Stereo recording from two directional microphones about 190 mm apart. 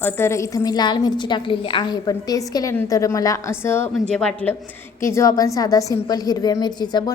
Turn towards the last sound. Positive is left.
turn(degrees=20)  # may be behind; listen again after turning